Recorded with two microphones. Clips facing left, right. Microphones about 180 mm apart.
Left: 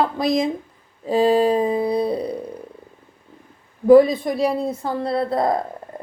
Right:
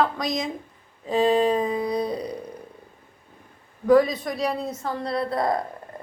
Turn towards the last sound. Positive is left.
turn(degrees=25)  # may be behind; listen again after turning